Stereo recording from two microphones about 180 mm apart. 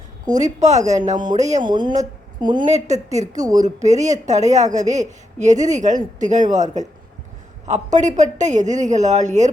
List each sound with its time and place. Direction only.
0.3 s a woman's voice: 40° right (ahead or behind)
2.4 s a woman's voice: 25° right (ahead or behind)
2.6 s speech: 40° right (ahead or behind)